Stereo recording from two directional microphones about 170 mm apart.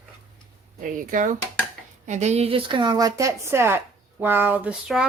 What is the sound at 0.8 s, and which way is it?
Speech, 50° right (ahead or behind).